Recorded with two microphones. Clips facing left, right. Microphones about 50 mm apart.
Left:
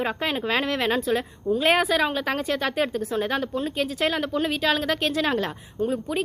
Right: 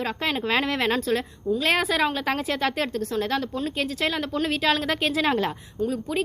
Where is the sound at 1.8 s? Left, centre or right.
Centre.